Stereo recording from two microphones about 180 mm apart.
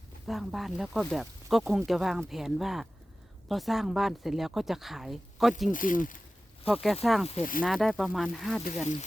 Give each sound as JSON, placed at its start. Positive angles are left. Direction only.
{"t": 0.3, "sound": "speech", "side_deg": 0}
{"t": 5.7, "sound": "speech", "side_deg": 50}
{"t": 6.8, "sound": "speech", "side_deg": 0}
{"t": 8.6, "sound": "speech", "side_deg": 45}